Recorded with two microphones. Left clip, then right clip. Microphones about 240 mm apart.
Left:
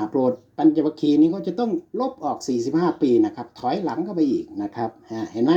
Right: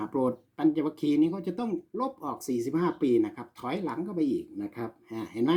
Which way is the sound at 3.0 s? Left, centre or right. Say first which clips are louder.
Left 7 dB; centre.